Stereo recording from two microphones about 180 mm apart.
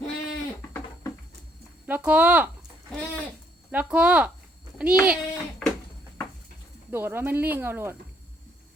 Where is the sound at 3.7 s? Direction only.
10° right (ahead or behind).